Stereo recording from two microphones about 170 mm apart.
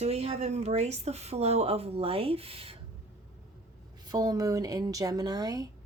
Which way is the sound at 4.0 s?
20° right (ahead or behind).